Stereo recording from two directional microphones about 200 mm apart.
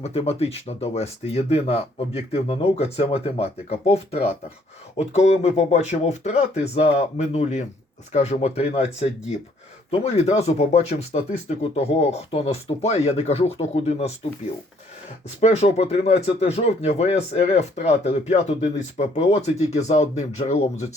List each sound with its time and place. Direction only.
0.0 s speech: 30° left (ahead or behind)
15.4 s speech: 30° left (ahead or behind)